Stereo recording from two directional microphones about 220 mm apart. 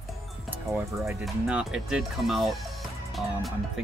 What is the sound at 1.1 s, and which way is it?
Speech, 5° right (ahead or behind).